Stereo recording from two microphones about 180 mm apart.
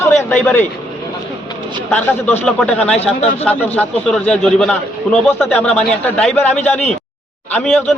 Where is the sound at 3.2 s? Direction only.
40° left (ahead or behind).